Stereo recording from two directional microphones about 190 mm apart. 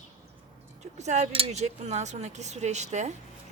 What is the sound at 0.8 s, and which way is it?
Speech, 35° right (ahead or behind).